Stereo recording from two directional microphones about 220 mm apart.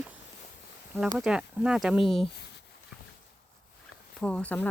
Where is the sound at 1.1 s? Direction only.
5° right (ahead or behind).